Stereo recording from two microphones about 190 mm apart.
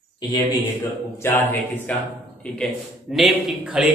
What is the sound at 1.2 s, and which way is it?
A man's voice, 10° left (ahead or behind).